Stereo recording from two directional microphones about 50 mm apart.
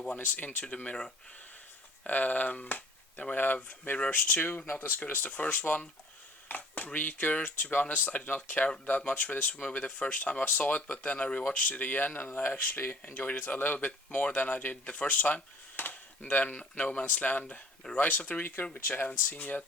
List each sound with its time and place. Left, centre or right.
0.2 s speech: left
2.0 s speech: left
13.0 s speech: left
15.7 s a sound: left
16.4 s speech: left